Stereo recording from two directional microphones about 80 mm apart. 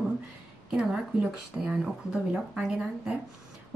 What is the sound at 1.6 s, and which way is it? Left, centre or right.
A woman's voice, centre.